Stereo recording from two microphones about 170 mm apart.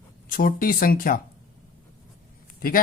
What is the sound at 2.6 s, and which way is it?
Speech, 60° left (ahead or behind).